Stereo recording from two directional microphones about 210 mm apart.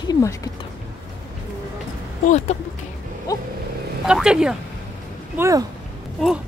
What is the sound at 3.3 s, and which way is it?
Vehicle, 15° left (ahead or behind).